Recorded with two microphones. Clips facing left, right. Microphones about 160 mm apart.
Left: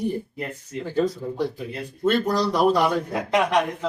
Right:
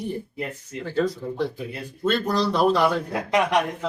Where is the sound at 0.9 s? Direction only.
15° left (ahead or behind).